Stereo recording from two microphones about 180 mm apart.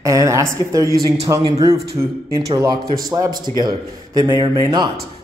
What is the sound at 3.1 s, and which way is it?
A man's voice, 20° right (ahead or behind).